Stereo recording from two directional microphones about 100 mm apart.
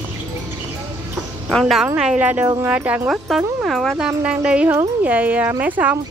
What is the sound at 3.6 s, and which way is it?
Speech, centre (ahead or behind).